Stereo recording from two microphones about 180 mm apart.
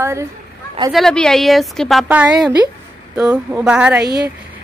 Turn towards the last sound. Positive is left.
turn(degrees=-5)  # may be behind; listen again after turning